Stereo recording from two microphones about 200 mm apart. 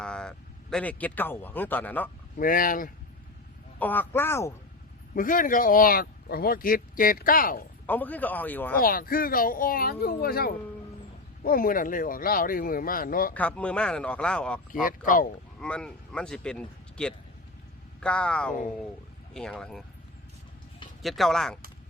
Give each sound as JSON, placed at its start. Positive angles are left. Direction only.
{"t": 0.0, "sound": "speech", "side_deg": 5}
{"t": 2.4, "sound": "speech", "side_deg": 45}
{"t": 3.8, "sound": "speech", "side_deg": 10}
{"t": 5.1, "sound": "speech", "side_deg": 45}
{"t": 7.9, "sound": "speech", "side_deg": 10}
{"t": 8.8, "sound": "speech", "side_deg": 45}
{"t": 13.3, "sound": "a man's voice", "side_deg": 5}
{"t": 14.8, "sound": "speech", "side_deg": 40}
{"t": 15.6, "sound": "a man's voice", "side_deg": 5}
{"t": 21.0, "sound": "a man's voice", "side_deg": 0}